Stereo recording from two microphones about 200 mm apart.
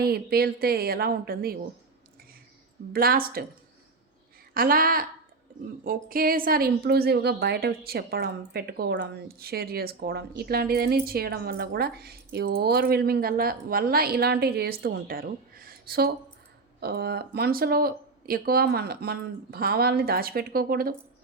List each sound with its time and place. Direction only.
0.0 s a woman's voice: 50° right (ahead or behind)
2.9 s a woman's voice: 50° right (ahead or behind)
4.5 s a woman's voice: 45° right (ahead or behind)